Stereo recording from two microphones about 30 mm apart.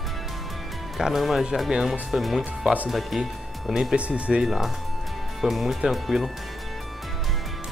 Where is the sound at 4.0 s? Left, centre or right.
Right.